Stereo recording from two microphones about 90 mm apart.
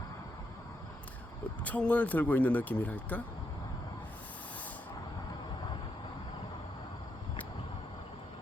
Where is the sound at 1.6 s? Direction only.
15° left (ahead or behind).